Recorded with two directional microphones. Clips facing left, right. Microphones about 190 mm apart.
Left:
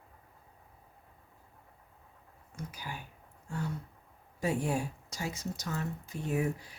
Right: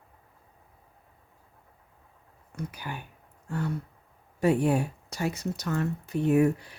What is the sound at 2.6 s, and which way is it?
Speech, 65° right (ahead or behind).